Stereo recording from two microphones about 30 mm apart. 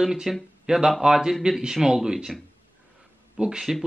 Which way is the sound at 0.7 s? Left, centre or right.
Right.